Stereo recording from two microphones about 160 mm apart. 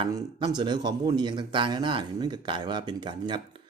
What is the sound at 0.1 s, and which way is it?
Speech, 25° right (ahead or behind).